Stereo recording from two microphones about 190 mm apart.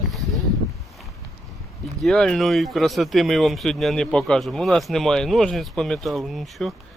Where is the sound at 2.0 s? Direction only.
Centre (ahead or behind).